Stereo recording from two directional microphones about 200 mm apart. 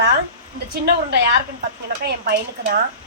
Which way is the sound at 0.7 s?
55° right (ahead or behind).